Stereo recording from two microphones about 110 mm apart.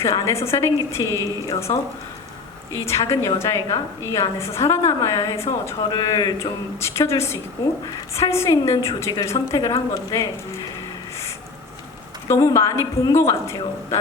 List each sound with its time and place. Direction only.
0.0 s a woman's voice: 25° left (ahead or behind)
2.7 s a woman's voice: 25° left (ahead or behind)
5.9 s speech: 40° left (ahead or behind)
6.4 s a woman's voice: 25° left (ahead or behind)
12.3 s a woman's voice: 30° left (ahead or behind)